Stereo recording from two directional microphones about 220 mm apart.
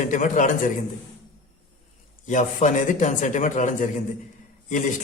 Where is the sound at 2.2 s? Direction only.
35° left (ahead or behind).